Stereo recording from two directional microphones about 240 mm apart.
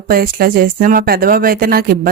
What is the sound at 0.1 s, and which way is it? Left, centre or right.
Speech, right.